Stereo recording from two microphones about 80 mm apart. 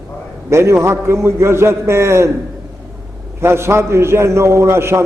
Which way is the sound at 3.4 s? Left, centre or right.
Right.